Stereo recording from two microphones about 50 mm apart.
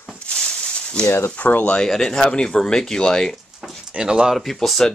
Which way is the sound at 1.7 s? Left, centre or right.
Centre.